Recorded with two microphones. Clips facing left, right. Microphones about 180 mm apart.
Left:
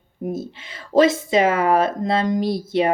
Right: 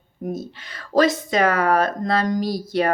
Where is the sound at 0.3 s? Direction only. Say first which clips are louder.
Left 2 dB; 25° left (ahead or behind).